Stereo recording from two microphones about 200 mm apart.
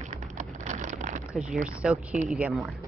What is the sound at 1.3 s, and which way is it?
Speech, centre (ahead or behind).